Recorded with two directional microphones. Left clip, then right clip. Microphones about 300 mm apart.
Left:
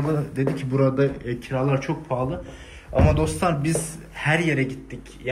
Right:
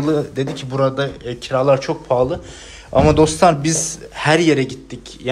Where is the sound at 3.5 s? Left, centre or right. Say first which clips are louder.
Right 7 dB; centre.